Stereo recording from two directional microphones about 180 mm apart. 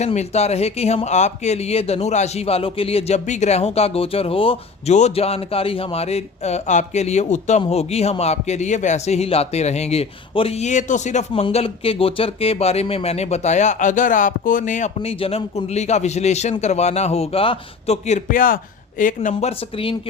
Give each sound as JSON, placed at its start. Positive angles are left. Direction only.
{"t": 0.0, "sound": "a man's voice", "side_deg": 40}